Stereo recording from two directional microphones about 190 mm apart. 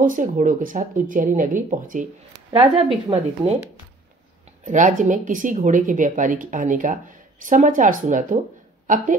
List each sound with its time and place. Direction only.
0.0 s speech: 45° right (ahead or behind)
2.5 s speech: 30° right (ahead or behind)
4.6 s a woman's voice: 40° right (ahead or behind)